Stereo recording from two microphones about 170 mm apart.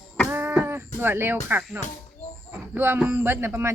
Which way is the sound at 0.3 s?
10° right (ahead or behind).